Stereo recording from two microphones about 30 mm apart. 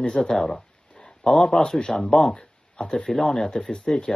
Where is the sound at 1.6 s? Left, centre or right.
Left.